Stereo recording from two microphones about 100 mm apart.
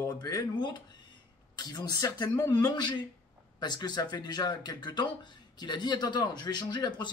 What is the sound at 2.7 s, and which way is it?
Speech, 50° left (ahead or behind).